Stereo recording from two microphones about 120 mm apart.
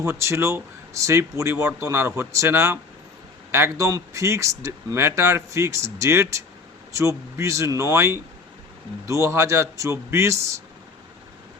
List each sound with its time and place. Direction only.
0.0 s speech: 25° right (ahead or behind)